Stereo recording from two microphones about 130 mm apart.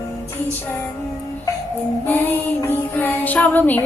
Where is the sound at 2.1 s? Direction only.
15° left (ahead or behind).